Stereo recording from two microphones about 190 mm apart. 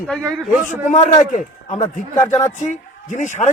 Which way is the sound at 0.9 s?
40° left (ahead or behind).